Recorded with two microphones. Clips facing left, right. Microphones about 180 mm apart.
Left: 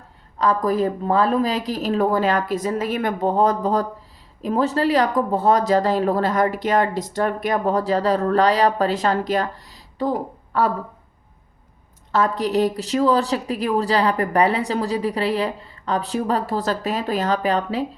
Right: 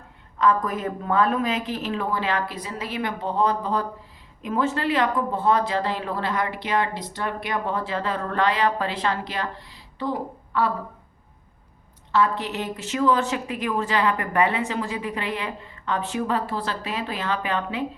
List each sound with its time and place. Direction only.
0.3 s speech: 35° left (ahead or behind)
12.1 s speech: 40° left (ahead or behind)